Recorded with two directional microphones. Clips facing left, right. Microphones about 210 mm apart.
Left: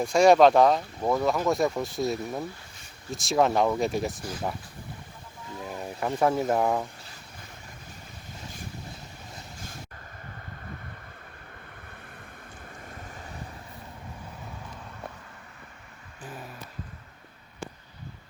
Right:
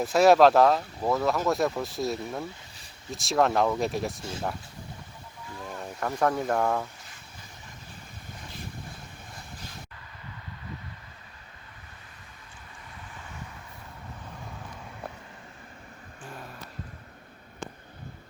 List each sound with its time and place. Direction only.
0.0 s speech: 5° right (ahead or behind)
5.6 s speech: 5° left (ahead or behind)
12.8 s vehicle: 45° left (ahead or behind)
16.2 s a sound: 5° left (ahead or behind)